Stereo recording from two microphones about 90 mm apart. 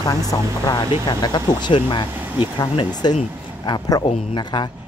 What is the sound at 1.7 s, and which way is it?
Speech, 75° left (ahead or behind).